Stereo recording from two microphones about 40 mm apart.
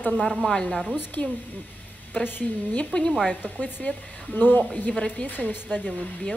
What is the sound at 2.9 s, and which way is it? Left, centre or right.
Speech, left.